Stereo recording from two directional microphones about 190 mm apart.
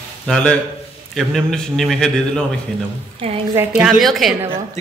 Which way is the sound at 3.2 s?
30° right (ahead or behind).